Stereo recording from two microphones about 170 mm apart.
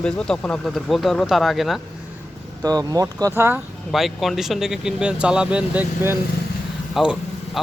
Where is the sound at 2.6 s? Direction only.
20° right (ahead or behind).